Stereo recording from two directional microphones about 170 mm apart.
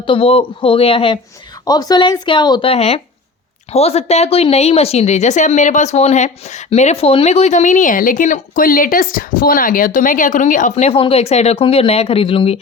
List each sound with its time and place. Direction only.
0.0 s a woman's voice: 30° left (ahead or behind)
1.6 s a woman's voice: 20° left (ahead or behind)